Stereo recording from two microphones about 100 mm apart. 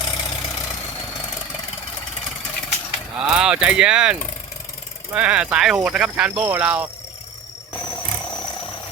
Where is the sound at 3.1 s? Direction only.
10° right (ahead or behind).